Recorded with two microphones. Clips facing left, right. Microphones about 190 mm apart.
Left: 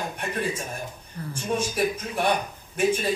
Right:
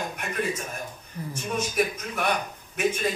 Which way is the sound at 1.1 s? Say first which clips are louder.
Right 1 dB; 15° right (ahead or behind).